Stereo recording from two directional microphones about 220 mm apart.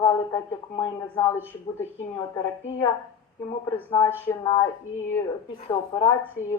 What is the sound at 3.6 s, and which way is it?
Speech, 15° left (ahead or behind).